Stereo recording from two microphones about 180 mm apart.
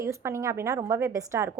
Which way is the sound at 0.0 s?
15° right (ahead or behind).